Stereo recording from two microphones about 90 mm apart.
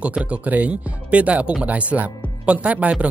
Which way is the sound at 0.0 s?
15° right (ahead or behind).